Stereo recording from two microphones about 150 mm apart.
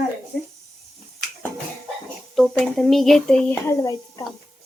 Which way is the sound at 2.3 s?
Centre (ahead or behind).